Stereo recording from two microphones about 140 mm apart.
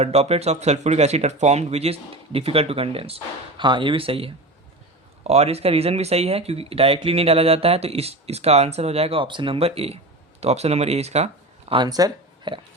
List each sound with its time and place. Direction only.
0.0 s speech: 50° right (ahead or behind)
11.7 s speech: 30° right (ahead or behind)